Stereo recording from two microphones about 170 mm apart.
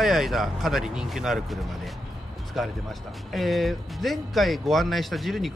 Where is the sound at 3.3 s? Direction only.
Centre (ahead or behind).